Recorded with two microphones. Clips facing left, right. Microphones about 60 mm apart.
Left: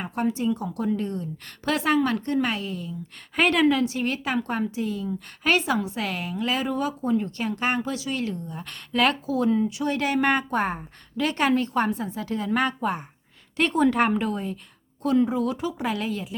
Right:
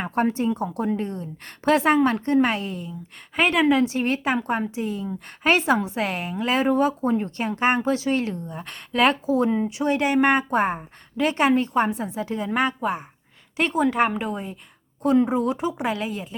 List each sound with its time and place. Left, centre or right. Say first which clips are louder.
0.0 s a woman's voice: right 3 dB; right
3.3 s a woman's voice: right 1 dB; centre
3.8 s a woman's voice: right 3 dB; right
15.0 s a woman's voice: right 2 dB; right